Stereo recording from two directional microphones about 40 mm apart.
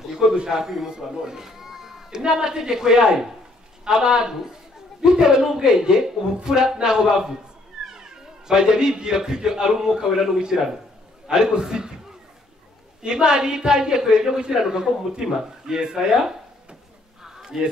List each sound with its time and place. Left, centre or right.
0.0 s a man's voice: centre
7.8 s cat: centre
8.5 s a man's voice: centre
13.0 s a man's voice: centre
17.2 s a sound: centre